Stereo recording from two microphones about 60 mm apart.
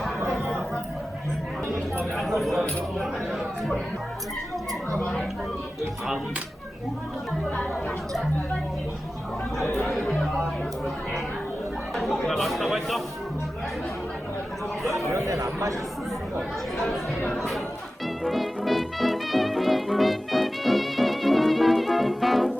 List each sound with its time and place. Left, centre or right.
0.3 s chatter: centre
2.1 s a sound: centre
3.0 s speech: centre
9.6 s speech: centre
11.9 s speech: centre
15.1 s speech: right
18.0 s music: centre